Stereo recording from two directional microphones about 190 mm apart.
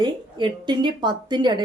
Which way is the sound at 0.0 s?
25° right (ahead or behind).